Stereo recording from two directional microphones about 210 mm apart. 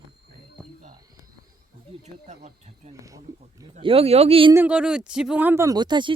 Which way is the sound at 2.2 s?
30° right (ahead or behind).